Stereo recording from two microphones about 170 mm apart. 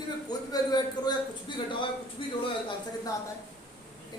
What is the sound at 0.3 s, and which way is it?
A man's voice, 25° left (ahead or behind).